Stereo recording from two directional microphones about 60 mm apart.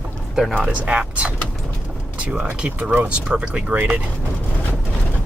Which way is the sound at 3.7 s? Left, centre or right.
Right.